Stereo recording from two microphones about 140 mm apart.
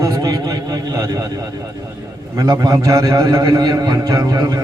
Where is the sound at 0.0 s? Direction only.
25° right (ahead or behind).